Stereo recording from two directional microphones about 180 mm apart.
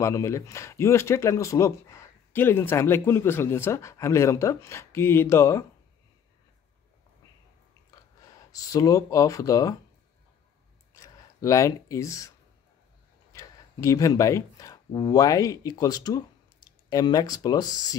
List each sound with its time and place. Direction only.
0.0 s speech: 15° left (ahead or behind)
8.5 s speech: 20° left (ahead or behind)
11.0 s a sound: 15° left (ahead or behind)
13.3 s speech: 20° left (ahead or behind)